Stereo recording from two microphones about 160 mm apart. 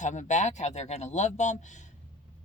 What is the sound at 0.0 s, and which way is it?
Speech, 50° left (ahead or behind).